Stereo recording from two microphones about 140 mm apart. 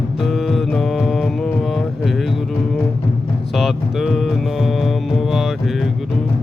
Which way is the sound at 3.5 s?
Centre (ahead or behind).